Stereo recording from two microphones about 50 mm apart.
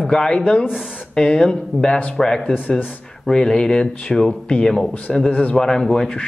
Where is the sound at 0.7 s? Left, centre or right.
Centre.